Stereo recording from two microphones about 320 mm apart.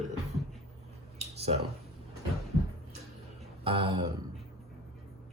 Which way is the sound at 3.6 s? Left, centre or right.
Centre.